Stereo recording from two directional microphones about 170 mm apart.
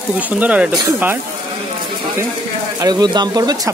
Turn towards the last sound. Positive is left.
turn(degrees=-25)  # may be behind; listen again after turning